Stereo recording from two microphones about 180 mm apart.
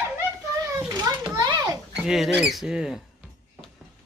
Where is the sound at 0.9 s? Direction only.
20° right (ahead or behind).